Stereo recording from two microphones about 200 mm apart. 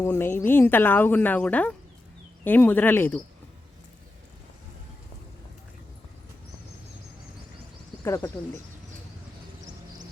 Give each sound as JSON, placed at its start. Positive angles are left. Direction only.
{"t": 0.0, "sound": "speech", "side_deg": 10}
{"t": 8.0, "sound": "speech", "side_deg": 15}